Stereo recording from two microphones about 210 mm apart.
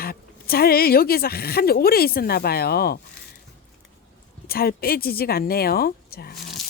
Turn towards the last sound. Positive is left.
turn(degrees=45)  # may be behind; listen again after turning